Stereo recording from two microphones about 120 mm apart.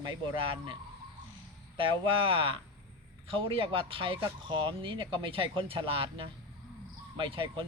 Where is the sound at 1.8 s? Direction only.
45° right (ahead or behind).